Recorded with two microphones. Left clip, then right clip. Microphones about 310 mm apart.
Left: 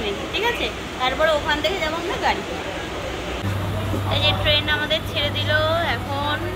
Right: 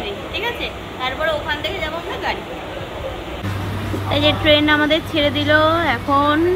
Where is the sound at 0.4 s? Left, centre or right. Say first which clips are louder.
Left 1 dB; centre.